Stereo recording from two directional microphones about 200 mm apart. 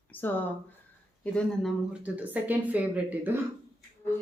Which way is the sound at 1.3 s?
Centre (ahead or behind).